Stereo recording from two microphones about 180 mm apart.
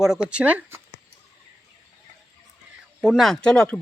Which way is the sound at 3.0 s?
Centre (ahead or behind).